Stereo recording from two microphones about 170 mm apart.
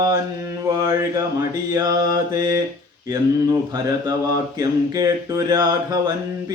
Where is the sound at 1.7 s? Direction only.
25° right (ahead or behind).